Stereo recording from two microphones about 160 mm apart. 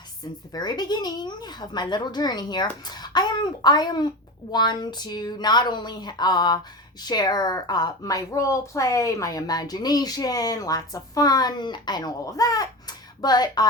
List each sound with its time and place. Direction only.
0.5 s a woman's voice: 25° left (ahead or behind)